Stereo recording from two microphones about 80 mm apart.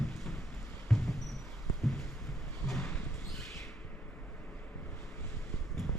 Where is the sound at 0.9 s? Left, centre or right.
Centre.